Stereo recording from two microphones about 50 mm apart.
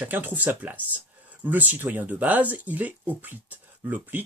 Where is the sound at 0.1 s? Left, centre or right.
Right.